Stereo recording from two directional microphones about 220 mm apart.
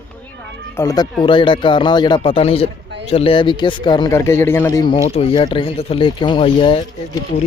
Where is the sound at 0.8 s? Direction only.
15° left (ahead or behind).